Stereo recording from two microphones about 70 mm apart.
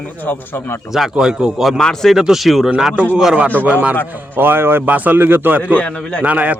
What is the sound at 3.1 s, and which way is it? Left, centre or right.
Speech, centre.